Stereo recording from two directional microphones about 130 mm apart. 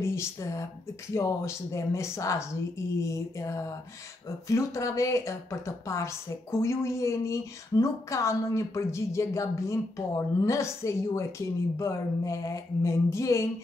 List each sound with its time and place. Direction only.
0.0 s speech: 20° left (ahead or behind)